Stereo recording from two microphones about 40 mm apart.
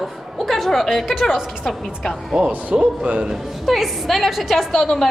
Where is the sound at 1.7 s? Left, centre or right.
Centre.